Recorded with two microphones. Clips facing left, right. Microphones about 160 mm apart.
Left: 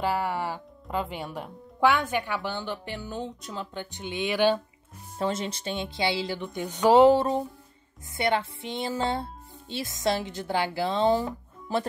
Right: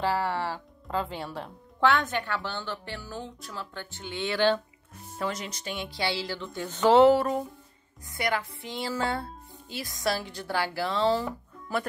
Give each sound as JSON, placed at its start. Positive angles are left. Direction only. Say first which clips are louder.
{"t": 0.0, "sound": "speech", "louder": "even", "side_deg": 10}
{"t": 5.2, "sound": "music", "louder": "left 4 dB", "side_deg": 25}